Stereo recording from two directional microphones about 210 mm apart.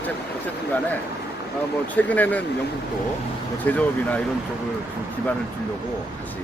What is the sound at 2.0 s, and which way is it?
Speech, 5° left (ahead or behind).